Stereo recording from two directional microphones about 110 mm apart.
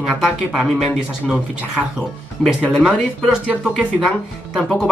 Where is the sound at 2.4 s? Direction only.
10° left (ahead or behind).